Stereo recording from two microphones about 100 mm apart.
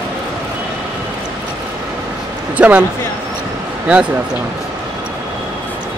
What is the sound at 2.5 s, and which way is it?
Speech, 15° right (ahead or behind).